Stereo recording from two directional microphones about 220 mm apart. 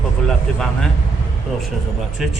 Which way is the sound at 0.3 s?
5° left (ahead or behind).